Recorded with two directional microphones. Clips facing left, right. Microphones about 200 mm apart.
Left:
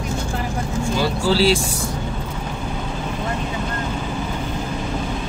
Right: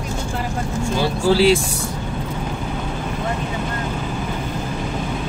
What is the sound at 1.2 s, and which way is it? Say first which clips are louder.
Speech: right 3 dB; 15° right (ahead or behind).